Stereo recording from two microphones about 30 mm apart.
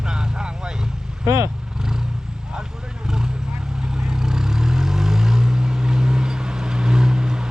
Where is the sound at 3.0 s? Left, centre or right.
Right.